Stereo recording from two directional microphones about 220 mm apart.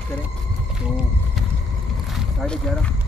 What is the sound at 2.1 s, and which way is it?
Vehicle, centre (ahead or behind).